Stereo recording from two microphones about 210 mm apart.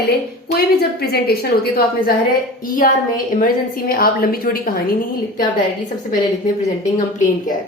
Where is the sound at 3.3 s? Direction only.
45° left (ahead or behind).